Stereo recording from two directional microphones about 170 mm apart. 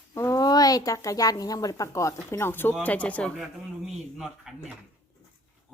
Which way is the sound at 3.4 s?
5° right (ahead or behind).